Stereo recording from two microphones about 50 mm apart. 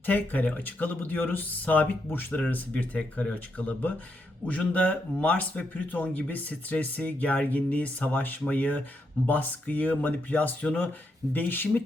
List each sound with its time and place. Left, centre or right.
0.0 s speech: left
11.3 s speech: left